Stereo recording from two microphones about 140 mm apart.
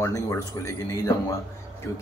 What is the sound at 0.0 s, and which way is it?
A man's voice, 20° left (ahead or behind).